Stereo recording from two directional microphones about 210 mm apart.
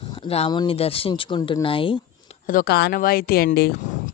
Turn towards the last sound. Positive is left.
turn(degrees=50)  # may be behind; listen again after turning